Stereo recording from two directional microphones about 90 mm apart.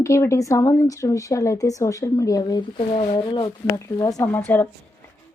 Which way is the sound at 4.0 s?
45° left (ahead or behind).